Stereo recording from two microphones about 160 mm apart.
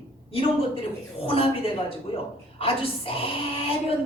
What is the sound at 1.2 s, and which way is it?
A woman's voice, 35° left (ahead or behind).